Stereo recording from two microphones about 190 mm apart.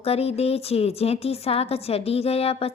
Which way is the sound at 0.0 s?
30° left (ahead or behind).